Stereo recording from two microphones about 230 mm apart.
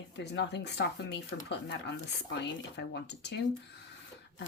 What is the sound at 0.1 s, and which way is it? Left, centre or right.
Speech, left.